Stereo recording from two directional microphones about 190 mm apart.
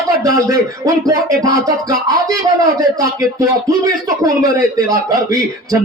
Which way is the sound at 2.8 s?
20° right (ahead or behind).